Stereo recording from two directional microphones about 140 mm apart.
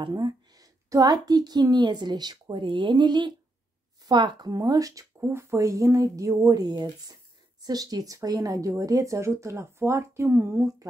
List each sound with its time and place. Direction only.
0.0 s a woman's voice: 30° right (ahead or behind)